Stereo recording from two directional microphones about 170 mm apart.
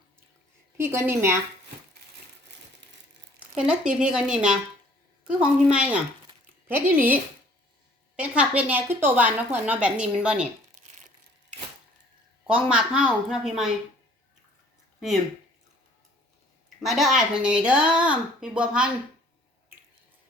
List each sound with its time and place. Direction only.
0.8 s speech: 15° right (ahead or behind)
3.5 s a woman's voice: 5° right (ahead or behind)
5.6 s speech: 5° right (ahead or behind)
10.8 s a sound: 45° right (ahead or behind)
12.5 s a woman's voice: 5° right (ahead or behind)
16.6 s a woman's voice: centre (ahead or behind)